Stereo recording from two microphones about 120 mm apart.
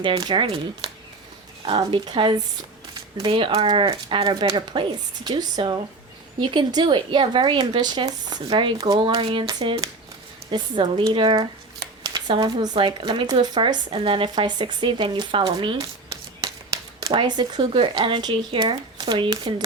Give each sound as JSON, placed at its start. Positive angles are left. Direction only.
{"t": 0.0, "sound": "speech", "side_deg": -40}
{"t": 1.6, "sound": "speech", "side_deg": -45}
{"t": 17.1, "sound": "speech", "side_deg": -40}